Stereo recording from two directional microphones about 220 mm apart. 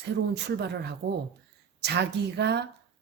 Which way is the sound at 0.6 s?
50° right (ahead or behind).